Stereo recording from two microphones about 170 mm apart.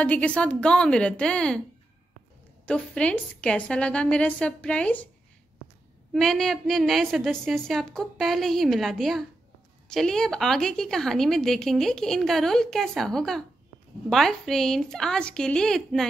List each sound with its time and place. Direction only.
0.0 s a woman's voice: 5° left (ahead or behind)
2.6 s a woman's voice: 5° left (ahead or behind)
6.1 s a woman's voice: centre (ahead or behind)